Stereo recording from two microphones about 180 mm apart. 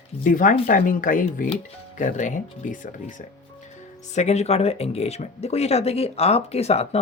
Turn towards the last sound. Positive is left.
turn(degrees=35)  # may be behind; listen again after turning